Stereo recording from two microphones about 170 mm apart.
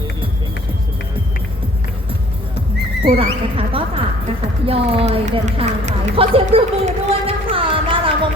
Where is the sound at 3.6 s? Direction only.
35° right (ahead or behind).